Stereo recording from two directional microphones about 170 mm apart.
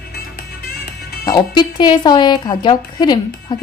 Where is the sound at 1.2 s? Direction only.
20° left (ahead or behind).